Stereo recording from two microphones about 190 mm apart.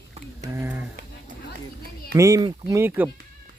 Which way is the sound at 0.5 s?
10° right (ahead or behind).